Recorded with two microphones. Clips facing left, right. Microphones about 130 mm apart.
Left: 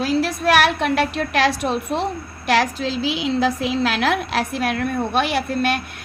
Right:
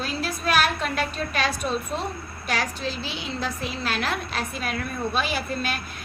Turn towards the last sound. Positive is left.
turn(degrees=65)  # may be behind; listen again after turning